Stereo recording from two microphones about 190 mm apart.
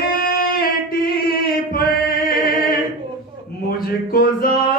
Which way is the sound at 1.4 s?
50° left (ahead or behind).